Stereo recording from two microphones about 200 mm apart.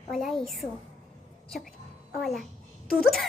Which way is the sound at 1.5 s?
Centre (ahead or behind).